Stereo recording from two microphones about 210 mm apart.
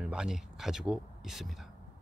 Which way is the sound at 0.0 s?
5° right (ahead or behind).